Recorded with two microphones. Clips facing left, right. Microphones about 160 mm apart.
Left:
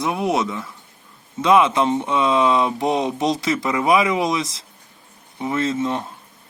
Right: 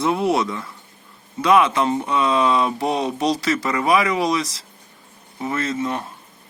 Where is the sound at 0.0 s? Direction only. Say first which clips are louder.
Right 2 dB; 15° left (ahead or behind).